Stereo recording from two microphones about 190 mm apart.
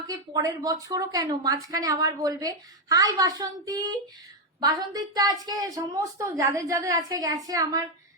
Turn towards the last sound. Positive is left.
turn(degrees=-20)  # may be behind; listen again after turning